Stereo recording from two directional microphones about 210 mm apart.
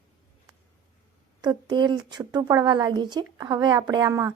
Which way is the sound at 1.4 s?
20° right (ahead or behind).